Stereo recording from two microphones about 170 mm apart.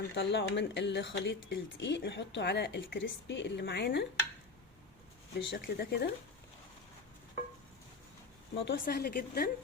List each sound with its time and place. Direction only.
0.1 s speech: 90° left; by 4.0 s 75° left (ahead or behind)
5.5 s speech: 75° left (ahead or behind)
8.5 s speech: 65° left (ahead or behind)